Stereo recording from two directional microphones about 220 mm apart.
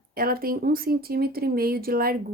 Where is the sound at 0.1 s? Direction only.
40° right (ahead or behind).